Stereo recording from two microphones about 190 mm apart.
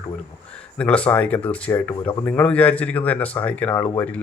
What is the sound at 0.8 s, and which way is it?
Speech, 5° left (ahead or behind).